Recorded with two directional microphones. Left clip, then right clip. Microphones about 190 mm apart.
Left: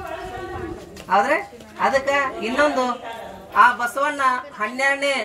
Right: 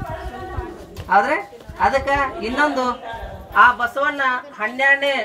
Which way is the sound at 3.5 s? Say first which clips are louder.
Right 2 dB; 25° left (ahead or behind).